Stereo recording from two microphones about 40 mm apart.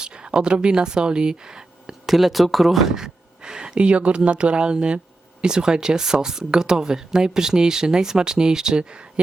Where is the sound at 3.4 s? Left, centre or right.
Centre.